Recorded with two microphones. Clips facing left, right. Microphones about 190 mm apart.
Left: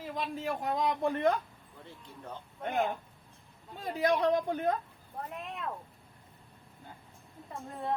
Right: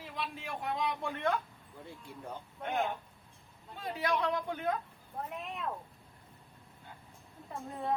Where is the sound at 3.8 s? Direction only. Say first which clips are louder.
Left 5 dB; 40° left (ahead or behind).